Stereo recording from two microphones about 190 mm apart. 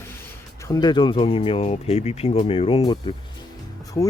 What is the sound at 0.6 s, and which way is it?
Speech, 20° left (ahead or behind).